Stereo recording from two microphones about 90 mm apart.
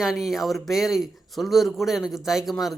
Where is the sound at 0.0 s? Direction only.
5° right (ahead or behind).